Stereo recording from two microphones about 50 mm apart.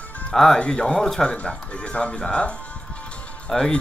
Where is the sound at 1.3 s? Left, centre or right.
Left.